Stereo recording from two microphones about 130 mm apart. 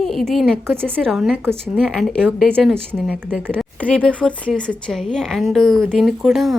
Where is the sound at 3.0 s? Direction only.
10° right (ahead or behind).